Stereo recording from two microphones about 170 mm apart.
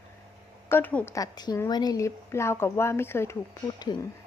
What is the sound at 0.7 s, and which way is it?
Speech, 10° left (ahead or behind).